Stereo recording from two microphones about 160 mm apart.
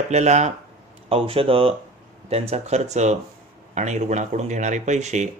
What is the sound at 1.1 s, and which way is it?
Speech, 35° right (ahead or behind).